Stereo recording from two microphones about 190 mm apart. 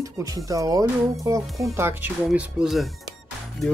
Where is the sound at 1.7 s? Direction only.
10° right (ahead or behind).